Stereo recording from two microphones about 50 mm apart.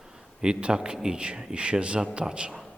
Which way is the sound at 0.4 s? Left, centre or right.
Centre.